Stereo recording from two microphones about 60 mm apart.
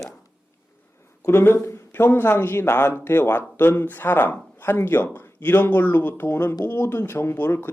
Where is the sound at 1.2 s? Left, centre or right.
Left.